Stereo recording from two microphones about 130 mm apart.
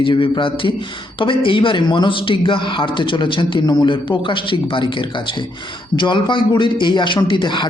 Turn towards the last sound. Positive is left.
turn(degrees=35)  # may be behind; listen again after turning